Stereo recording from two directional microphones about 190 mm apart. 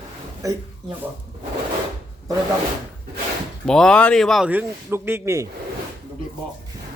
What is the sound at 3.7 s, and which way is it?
Speech, 5° left (ahead or behind).